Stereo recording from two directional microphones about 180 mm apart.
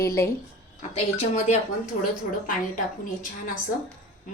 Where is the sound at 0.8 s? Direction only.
35° left (ahead or behind).